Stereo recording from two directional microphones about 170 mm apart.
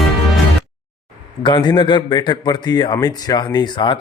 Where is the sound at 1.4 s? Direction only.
25° left (ahead or behind).